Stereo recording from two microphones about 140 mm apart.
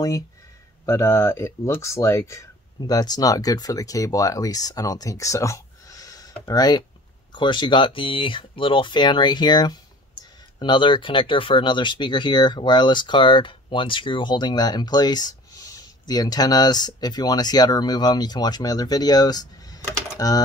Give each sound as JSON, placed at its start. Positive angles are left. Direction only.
{"t": 0.8, "sound": "speech", "side_deg": 20}